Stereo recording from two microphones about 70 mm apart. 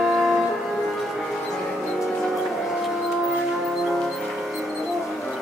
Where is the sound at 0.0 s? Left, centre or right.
Centre.